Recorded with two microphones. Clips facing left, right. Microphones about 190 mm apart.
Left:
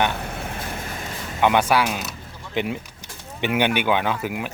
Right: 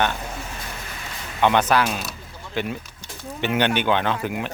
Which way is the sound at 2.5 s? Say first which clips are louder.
Left 2 dB; 20° left (ahead or behind).